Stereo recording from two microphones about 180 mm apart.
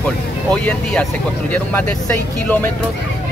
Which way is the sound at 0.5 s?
5° left (ahead or behind).